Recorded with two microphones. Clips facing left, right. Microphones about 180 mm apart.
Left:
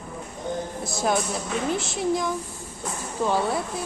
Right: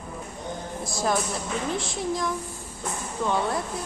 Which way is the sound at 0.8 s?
Centre (ahead or behind).